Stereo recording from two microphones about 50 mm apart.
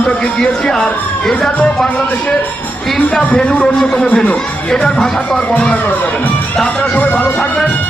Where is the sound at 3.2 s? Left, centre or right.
Left.